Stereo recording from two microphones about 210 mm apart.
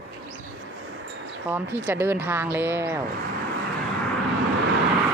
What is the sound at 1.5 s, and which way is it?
Speech, 10° right (ahead or behind).